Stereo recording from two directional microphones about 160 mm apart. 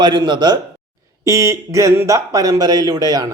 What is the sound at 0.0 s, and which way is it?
A man's voice, 25° right (ahead or behind).